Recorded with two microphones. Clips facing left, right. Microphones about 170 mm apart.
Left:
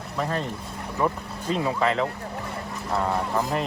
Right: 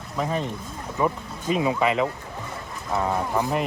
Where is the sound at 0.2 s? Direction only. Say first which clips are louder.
Right 1 dB; 5° right (ahead or behind).